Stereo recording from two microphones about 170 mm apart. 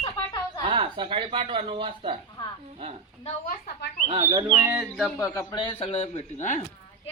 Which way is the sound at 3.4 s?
55° left (ahead or behind).